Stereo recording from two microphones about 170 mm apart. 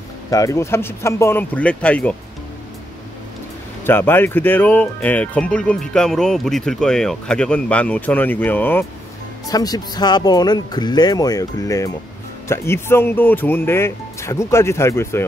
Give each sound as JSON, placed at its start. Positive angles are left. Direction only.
{"t": 0.3, "sound": "speech", "side_deg": 20}
{"t": 3.8, "sound": "speech", "side_deg": 10}
{"t": 9.5, "sound": "speech", "side_deg": 20}